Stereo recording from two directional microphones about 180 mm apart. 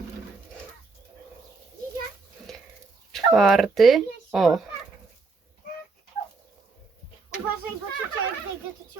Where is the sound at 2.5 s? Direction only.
Centre (ahead or behind).